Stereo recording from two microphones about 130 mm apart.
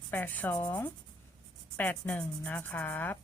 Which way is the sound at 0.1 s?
15° left (ahead or behind).